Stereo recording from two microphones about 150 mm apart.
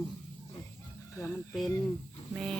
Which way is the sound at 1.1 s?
20° left (ahead or behind).